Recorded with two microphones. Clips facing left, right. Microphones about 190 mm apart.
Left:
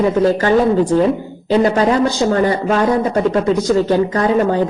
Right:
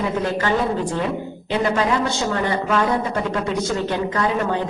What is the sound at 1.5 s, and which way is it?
A man's voice, 35° left (ahead or behind).